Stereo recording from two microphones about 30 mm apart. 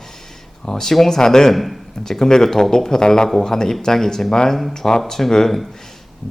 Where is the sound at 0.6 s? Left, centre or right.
Centre.